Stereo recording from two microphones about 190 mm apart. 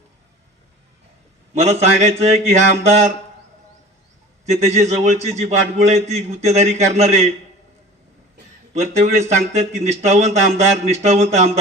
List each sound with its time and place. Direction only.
1.5 s a man's voice: 35° right (ahead or behind)
4.6 s a man's voice: 35° right (ahead or behind)
8.7 s a man's voice: 35° right (ahead or behind)